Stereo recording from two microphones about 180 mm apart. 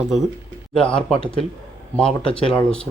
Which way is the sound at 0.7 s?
5° left (ahead or behind).